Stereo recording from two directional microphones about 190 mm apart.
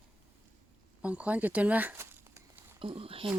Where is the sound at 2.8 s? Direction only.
30° right (ahead or behind).